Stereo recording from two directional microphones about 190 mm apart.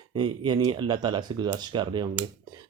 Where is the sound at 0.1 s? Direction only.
25° right (ahead or behind).